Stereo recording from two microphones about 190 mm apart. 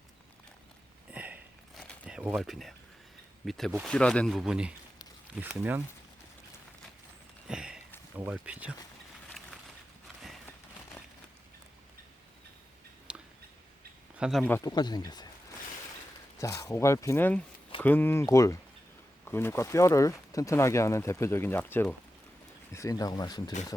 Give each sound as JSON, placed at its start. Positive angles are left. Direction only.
{"t": 1.1, "sound": "sniff", "side_deg": -10}
{"t": 1.8, "sound": "a sound", "side_deg": -5}
{"t": 3.4, "sound": "speech", "side_deg": 0}
{"t": 7.4, "sound": "a sound", "side_deg": -5}
{"t": 8.1, "sound": "speech", "side_deg": -5}
{"t": 13.1, "sound": "a sound", "side_deg": -5}
{"t": 14.2, "sound": "speech", "side_deg": 0}
{"t": 14.4, "sound": "speech", "side_deg": 15}
{"t": 16.4, "sound": "speech", "side_deg": 15}